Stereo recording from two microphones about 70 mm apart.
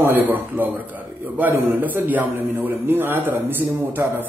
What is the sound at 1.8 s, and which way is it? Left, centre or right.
A man's voice, right.